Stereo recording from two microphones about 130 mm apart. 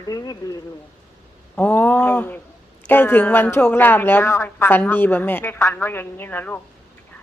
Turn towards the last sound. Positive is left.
turn(degrees=15)  # may be behind; listen again after turning